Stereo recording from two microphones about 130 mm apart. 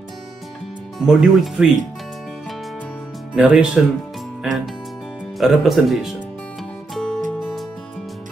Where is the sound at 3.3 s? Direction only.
5° right (ahead or behind).